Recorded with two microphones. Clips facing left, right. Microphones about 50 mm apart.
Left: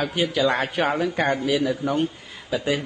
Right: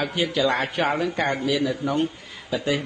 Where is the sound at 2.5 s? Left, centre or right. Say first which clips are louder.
Left 1 dB; centre.